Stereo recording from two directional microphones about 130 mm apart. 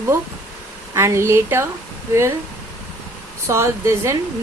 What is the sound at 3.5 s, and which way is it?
Speech, 20° right (ahead or behind).